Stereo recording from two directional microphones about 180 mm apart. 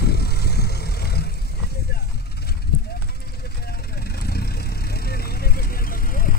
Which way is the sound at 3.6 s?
60° left (ahead or behind).